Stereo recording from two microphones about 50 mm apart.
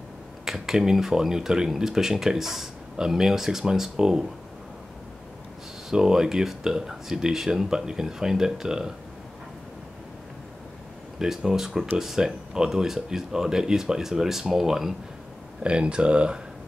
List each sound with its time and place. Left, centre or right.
0.5 s speech: centre
5.9 s speech: centre
11.1 s speech: centre
15.6 s speech: right